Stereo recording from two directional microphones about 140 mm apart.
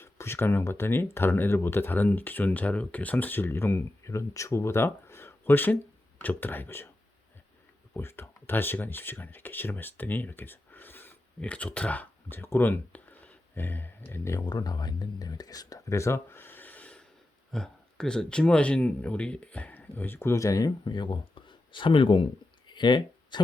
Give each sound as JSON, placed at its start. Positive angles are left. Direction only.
{"t": 0.0, "sound": "speech", "side_deg": 15}
{"t": 7.9, "sound": "speech", "side_deg": 15}